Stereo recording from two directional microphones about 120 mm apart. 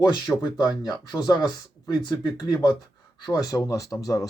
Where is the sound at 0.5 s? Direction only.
35° left (ahead or behind).